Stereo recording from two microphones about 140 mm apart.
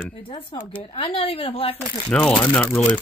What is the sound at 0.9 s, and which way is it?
Speech, 40° left (ahead or behind).